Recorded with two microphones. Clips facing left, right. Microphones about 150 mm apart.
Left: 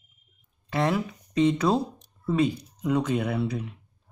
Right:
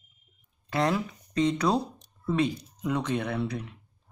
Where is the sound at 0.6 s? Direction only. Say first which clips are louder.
Left 1 dB; centre (ahead or behind).